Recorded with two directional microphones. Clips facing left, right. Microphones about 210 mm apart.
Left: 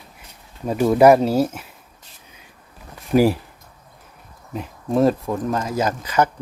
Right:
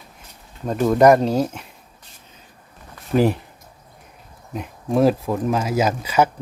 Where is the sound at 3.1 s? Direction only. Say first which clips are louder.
Left 2 dB; 30° left (ahead or behind).